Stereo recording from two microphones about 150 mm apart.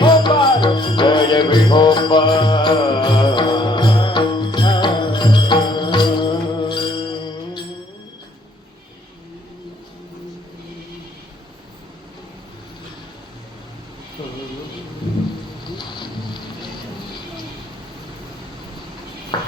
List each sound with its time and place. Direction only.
0.0 s music: 30° left (ahead or behind)
15.6 s a sound: 30° left (ahead or behind)
19.3 s ping: 30° left (ahead or behind)